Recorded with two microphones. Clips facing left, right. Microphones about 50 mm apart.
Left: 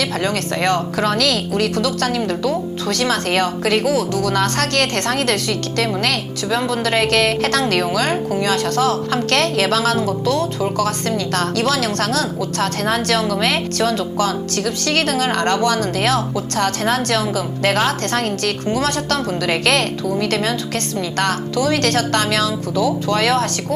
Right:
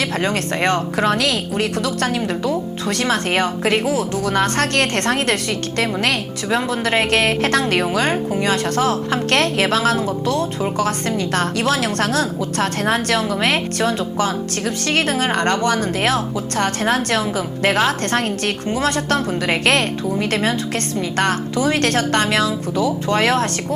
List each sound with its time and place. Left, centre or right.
0.0 s a woman's voice: right